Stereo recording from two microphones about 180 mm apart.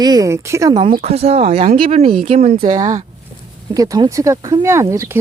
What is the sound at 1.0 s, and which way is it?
Speech, 35° right (ahead or behind).